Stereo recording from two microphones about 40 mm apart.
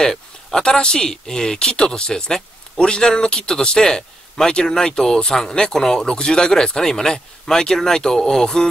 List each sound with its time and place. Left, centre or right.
0.0 s speech: centre